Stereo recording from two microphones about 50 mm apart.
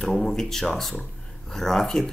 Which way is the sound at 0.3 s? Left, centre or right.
Centre.